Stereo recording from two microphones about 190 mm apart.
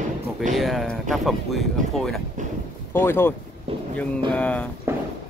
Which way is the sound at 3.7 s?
30° right (ahead or behind).